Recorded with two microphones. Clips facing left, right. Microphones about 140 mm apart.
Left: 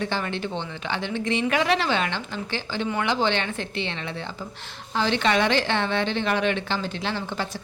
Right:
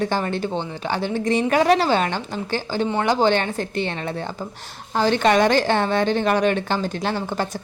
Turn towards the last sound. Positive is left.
turn(degrees=-45)  # may be behind; listen again after turning